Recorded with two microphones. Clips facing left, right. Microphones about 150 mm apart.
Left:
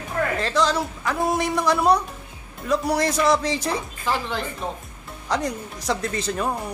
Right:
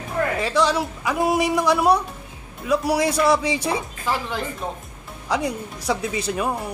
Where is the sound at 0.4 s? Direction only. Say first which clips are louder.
Right 2 dB; 5° right (ahead or behind).